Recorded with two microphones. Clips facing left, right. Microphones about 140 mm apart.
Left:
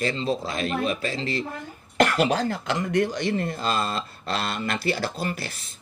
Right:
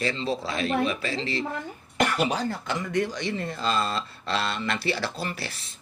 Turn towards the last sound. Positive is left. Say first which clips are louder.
# left 3 dB
turn(degrees=45)  # may be behind; listen again after turning